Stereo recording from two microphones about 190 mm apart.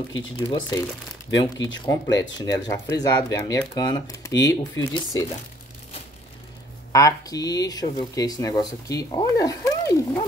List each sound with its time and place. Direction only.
0.5 s speech: 25° left (ahead or behind)
6.9 s speech: 20° left (ahead or behind)